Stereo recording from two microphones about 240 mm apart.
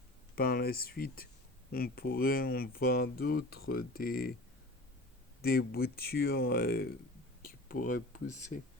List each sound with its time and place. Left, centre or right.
0.3 s speech: left
5.4 s speech: left